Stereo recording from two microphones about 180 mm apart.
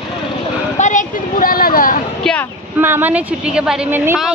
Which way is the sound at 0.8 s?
45° left (ahead or behind).